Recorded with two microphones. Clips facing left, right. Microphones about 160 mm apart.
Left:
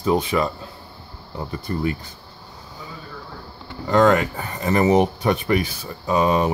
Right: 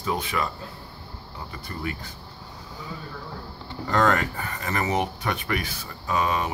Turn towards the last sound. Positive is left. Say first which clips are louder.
# left 7 dB
turn(degrees=30)  # may be behind; listen again after turning